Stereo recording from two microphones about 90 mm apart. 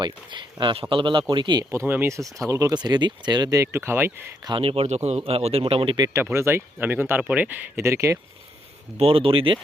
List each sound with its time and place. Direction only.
0.0 s speech: 60° right (ahead or behind)
1.9 s speech: 25° right (ahead or behind)
2.1 s speech: 40° right (ahead or behind)
4.4 s speech: 80° right
6.1 s speech: 30° right (ahead or behind)
7.8 s speech: 30° right (ahead or behind)
9.0 s speech: 90° right